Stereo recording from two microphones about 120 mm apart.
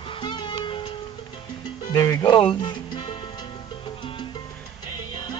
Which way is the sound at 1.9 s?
30° left (ahead or behind).